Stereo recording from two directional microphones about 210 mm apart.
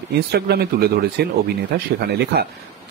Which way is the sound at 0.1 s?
50° right (ahead or behind).